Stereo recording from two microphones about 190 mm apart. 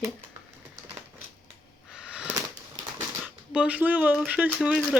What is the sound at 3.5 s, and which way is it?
Speech, 5° right (ahead or behind).